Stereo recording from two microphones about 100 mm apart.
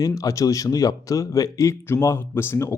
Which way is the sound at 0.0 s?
35° left (ahead or behind).